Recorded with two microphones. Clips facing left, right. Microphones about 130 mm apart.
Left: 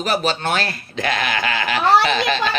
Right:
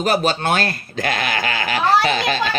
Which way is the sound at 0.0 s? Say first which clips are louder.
Right 2 dB; 45° right (ahead or behind).